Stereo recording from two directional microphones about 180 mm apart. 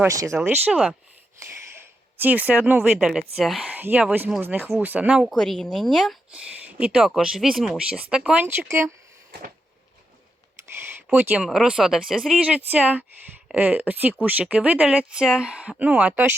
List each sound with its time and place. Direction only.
0.0 s speech: 15° right (ahead or behind)
0.3 s speech: 5° right (ahead or behind)
10.7 s a sound: 10° right (ahead or behind)
11.4 s speech: 5° right (ahead or behind)